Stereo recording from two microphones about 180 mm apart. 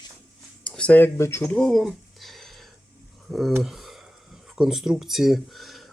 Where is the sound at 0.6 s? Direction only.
5° left (ahead or behind).